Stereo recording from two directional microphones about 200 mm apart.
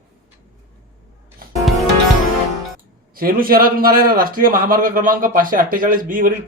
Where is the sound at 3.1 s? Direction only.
45° right (ahead or behind).